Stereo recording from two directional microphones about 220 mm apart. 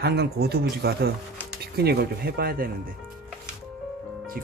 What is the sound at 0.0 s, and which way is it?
Speech, 45° right (ahead or behind).